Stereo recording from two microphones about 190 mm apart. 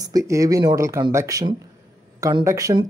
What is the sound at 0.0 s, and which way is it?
Speech, 20° right (ahead or behind).